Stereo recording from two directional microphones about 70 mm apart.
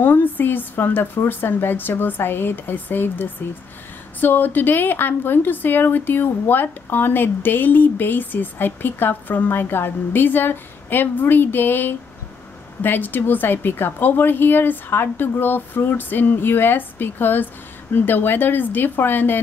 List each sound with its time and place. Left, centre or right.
0.0 s a woman's voice: left